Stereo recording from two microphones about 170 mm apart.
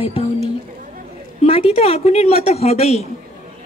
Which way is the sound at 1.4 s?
35° left (ahead or behind).